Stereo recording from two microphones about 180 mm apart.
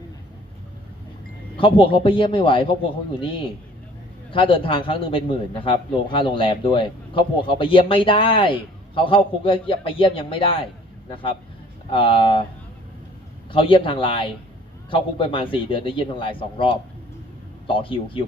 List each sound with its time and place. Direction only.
1.5 s a man's voice: 30° left (ahead or behind)
4.3 s a man's voice: 30° left (ahead or behind)
13.5 s a man's voice: 30° left (ahead or behind)